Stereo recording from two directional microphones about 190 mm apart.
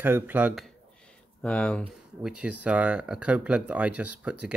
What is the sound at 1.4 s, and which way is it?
Speech, 5° left (ahead or behind).